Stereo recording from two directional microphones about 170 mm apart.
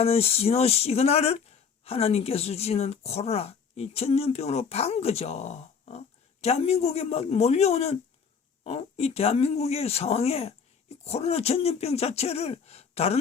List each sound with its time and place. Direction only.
0.0 s speech: 35° left (ahead or behind)